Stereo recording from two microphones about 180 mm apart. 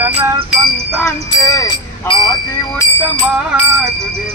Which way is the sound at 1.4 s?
20° left (ahead or behind).